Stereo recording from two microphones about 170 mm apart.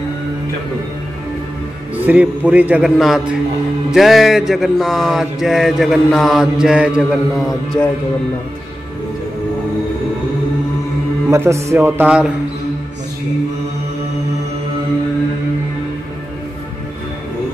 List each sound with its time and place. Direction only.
2.0 s a man's voice: 10° right (ahead or behind)
3.9 s mantra: centre (ahead or behind)
11.2 s a man's voice: 15° right (ahead or behind)